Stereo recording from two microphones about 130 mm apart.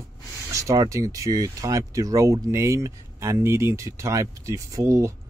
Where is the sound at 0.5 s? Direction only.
25° right (ahead or behind).